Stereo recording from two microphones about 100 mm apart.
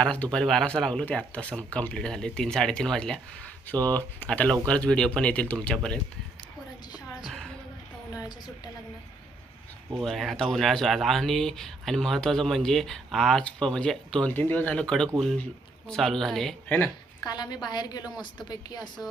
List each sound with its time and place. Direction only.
0.0 s speech: 10° left (ahead or behind)
7.3 s music: 5° left (ahead or behind)
10.0 s speech: centre (ahead or behind)
16.6 s speech: 15° left (ahead or behind)
17.2 s a woman's voice: 45° left (ahead or behind)